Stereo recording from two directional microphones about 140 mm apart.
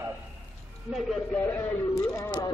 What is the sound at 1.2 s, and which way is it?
Speech, 10° left (ahead or behind).